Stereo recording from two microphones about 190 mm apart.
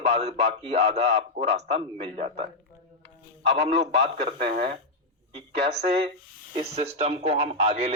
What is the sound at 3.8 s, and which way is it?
Speech, 30° right (ahead or behind).